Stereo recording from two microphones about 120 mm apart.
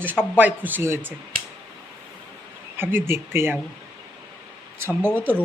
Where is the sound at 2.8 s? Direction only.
15° right (ahead or behind).